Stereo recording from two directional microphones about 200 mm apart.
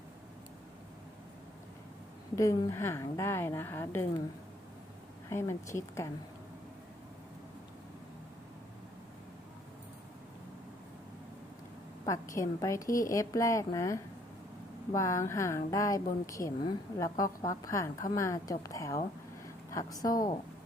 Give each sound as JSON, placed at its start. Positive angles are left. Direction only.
{"t": 2.3, "sound": "a woman's voice", "side_deg": 15}
{"t": 5.3, "sound": "a woman's voice", "side_deg": 15}
{"t": 12.0, "sound": "a woman's voice", "side_deg": 15}